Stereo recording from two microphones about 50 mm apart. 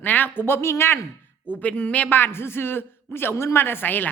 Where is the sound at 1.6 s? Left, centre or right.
Left.